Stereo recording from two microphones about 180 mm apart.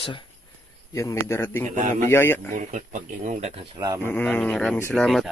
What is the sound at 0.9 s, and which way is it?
A man's voice, 10° left (ahead or behind).